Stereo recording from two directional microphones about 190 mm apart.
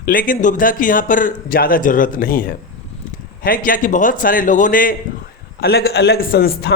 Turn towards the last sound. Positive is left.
turn(degrees=50)  # may be behind; listen again after turning